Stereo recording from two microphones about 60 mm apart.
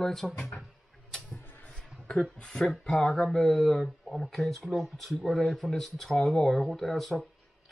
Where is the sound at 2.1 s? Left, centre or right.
Centre.